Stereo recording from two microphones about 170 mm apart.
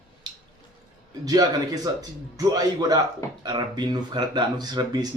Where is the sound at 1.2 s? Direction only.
20° right (ahead or behind).